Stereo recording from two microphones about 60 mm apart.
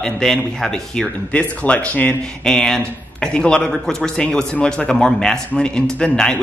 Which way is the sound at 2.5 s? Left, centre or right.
Centre.